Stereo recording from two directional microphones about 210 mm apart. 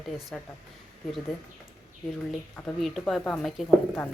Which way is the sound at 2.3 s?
Centre (ahead or behind).